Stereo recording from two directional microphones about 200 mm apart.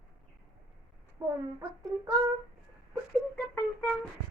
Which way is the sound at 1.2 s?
15° right (ahead or behind).